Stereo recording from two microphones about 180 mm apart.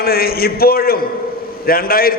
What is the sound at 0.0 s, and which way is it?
A man's voice, 60° left (ahead or behind).